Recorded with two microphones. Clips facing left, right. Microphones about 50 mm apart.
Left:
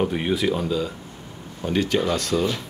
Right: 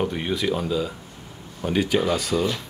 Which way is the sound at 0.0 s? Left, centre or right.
Centre.